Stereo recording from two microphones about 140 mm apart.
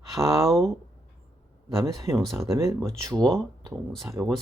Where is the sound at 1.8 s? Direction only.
25° right (ahead or behind).